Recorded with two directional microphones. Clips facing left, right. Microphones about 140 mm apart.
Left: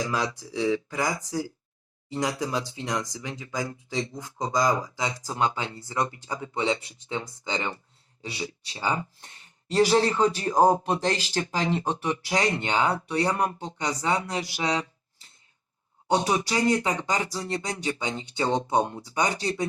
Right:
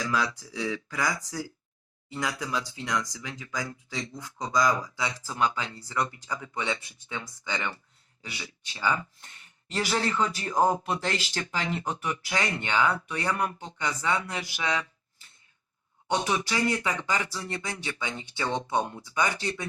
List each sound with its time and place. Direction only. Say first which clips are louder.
0.2 s speech: left 3 dB; 25° left (ahead or behind)
2.6 s speech: left 1 dB; 20° left (ahead or behind)